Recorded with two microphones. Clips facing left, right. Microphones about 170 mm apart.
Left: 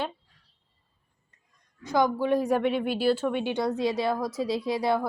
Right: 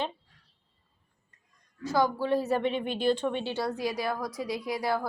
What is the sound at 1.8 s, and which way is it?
A woman's voice, 20° left (ahead or behind).